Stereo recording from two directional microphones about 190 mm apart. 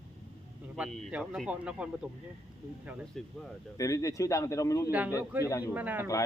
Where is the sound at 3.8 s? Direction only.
15° left (ahead or behind).